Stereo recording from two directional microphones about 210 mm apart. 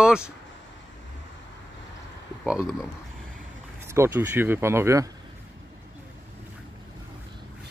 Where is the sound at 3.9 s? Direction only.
10° right (ahead or behind).